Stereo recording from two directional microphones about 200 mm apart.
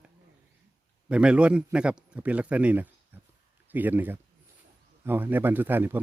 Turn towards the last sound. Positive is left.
turn(degrees=-10)  # may be behind; listen again after turning